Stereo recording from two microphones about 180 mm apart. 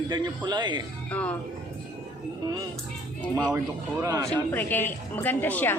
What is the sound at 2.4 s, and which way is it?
Music, 20° right (ahead or behind).